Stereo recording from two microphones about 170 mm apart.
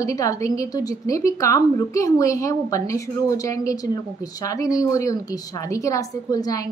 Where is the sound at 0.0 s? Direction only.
20° left (ahead or behind).